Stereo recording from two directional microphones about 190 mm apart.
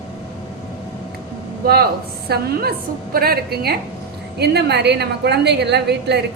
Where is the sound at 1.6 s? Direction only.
55° right (ahead or behind).